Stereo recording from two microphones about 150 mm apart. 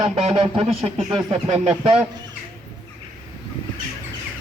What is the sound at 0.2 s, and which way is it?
Speech, 40° right (ahead or behind).